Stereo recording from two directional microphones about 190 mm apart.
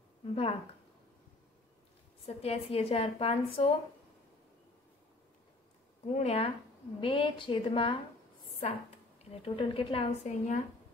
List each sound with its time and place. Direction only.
0.2 s speech: 30° left (ahead or behind)
2.2 s a woman's voice: 30° left (ahead or behind)
6.1 s a woman's voice: 35° left (ahead or behind)
9.3 s a woman's voice: 30° left (ahead or behind)